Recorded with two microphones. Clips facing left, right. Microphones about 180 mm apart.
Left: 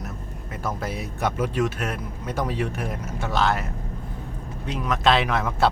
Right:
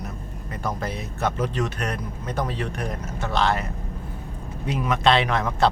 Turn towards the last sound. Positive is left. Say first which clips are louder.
# right 1 dB
turn(degrees=5)  # may be behind; listen again after turning